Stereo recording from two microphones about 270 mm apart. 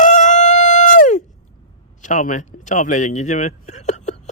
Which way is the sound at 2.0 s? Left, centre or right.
Left.